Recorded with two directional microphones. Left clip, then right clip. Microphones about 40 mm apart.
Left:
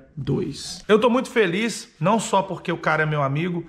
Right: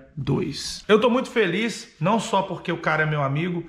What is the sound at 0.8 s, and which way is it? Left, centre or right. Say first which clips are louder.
A man's voice: left 1 dB; centre.